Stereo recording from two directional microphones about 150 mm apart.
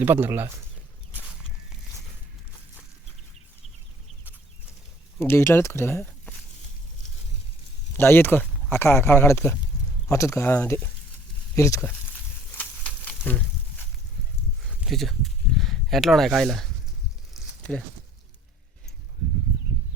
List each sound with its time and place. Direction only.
0.0 s speech: 15° right (ahead or behind)
5.2 s speech: 15° left (ahead or behind)
7.9 s speech: 15° left (ahead or behind)
12.5 s a sound: 10° left (ahead or behind)
14.7 s speech: centre (ahead or behind)
17.4 s a sound: centre (ahead or behind)